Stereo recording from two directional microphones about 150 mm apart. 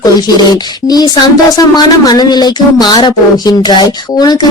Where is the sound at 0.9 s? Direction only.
25° left (ahead or behind).